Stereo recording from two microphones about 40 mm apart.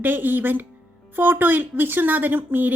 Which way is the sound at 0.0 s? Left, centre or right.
Right.